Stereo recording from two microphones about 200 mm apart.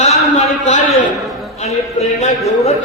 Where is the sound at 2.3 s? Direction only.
15° left (ahead or behind).